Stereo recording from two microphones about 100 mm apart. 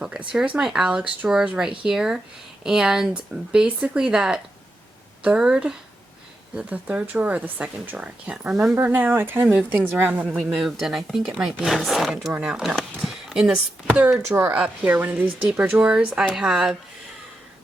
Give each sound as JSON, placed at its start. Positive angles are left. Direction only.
{"t": 0.0, "sound": "speech", "side_deg": -10}
{"t": 10.2, "sound": "speech", "side_deg": -5}
{"t": 12.7, "sound": "a sound", "side_deg": -5}
{"t": 13.8, "sound": "speech", "side_deg": -15}
{"t": 14.3, "sound": "speech", "side_deg": -25}
{"t": 14.5, "sound": "speech", "side_deg": -15}